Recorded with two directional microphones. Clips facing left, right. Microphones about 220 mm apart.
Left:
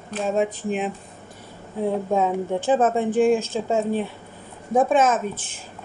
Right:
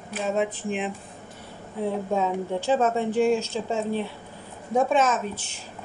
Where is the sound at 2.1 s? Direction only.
50° left (ahead or behind).